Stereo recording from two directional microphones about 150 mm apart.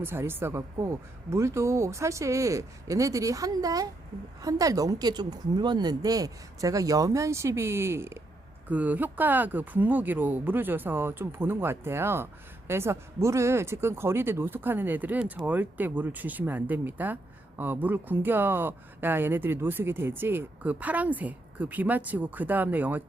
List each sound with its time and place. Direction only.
0.0 s speech: 15° right (ahead or behind)